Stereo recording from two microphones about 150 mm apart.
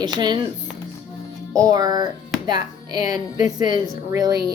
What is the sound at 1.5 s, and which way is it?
Speech, 25° right (ahead or behind).